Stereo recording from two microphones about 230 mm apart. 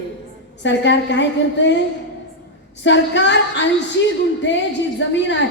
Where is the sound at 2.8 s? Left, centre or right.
Left.